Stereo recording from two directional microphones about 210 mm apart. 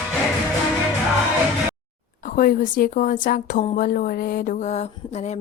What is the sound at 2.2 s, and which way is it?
A woman's voice, 40° left (ahead or behind).